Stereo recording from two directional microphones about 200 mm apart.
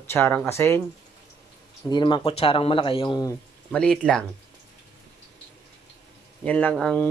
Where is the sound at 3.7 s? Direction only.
5° left (ahead or behind).